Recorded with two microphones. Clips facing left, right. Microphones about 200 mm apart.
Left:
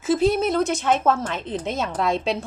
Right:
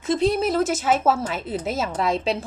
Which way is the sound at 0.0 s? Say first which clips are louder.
Left 1 dB; centre (ahead or behind).